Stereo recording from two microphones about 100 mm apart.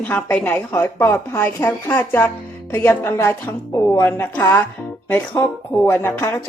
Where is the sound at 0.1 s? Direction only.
15° left (ahead or behind).